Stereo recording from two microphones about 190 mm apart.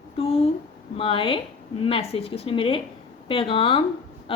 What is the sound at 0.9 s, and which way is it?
A woman's voice, 30° left (ahead or behind).